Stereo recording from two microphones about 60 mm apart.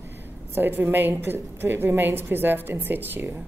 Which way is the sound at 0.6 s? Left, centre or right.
Right.